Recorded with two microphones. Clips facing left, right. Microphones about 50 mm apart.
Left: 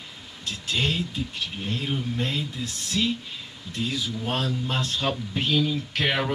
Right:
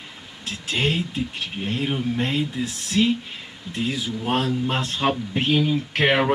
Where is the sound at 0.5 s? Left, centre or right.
Right.